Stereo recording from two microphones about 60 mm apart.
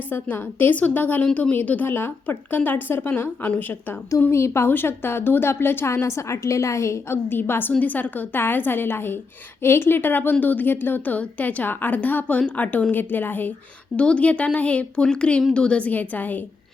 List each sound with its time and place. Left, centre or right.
0.1 s a woman's voice: left
4.3 s speech: left
4.7 s a woman's voice: left
5.9 s a woman's voice: left
7.3 s a woman's voice: left
13.9 s a woman's voice: centre